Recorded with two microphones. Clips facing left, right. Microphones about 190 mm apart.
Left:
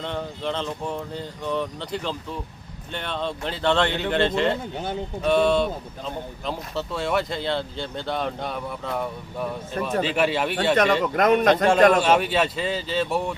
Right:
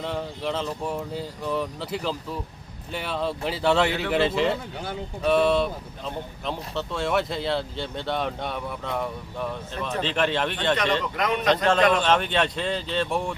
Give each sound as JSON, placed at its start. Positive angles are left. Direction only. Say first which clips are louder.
{"t": 0.0, "sound": "speech", "louder": "even", "side_deg": -5}
{"t": 4.7, "sound": "speech", "louder": "left 4 dB", "side_deg": 20}
{"t": 5.2, "sound": "speech", "louder": "left 1 dB", "side_deg": 0}
{"t": 11.0, "sound": "a man's voice", "louder": "left 6 dB", "side_deg": 50}
{"t": 11.9, "sound": "speech", "louder": "left 3 dB", "side_deg": 10}